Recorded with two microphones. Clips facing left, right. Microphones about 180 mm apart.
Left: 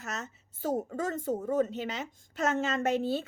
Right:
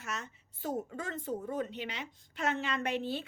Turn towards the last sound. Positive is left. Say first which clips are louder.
# left 6 dB
turn(degrees=40)  # may be behind; listen again after turning